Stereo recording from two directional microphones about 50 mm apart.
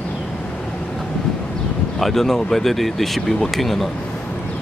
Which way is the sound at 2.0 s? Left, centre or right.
Centre.